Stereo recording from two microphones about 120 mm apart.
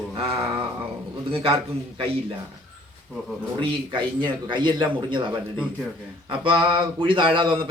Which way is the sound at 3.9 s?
45° right (ahead or behind).